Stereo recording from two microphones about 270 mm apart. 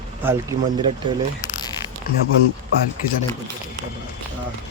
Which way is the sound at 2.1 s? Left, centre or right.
Left.